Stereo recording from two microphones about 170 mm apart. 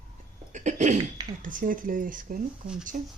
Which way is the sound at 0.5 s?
45° right (ahead or behind).